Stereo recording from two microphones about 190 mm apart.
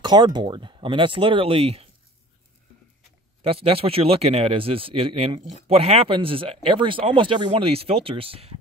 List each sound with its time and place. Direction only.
0.0 s speech: 25° right (ahead or behind)
3.4 s speech: 30° right (ahead or behind)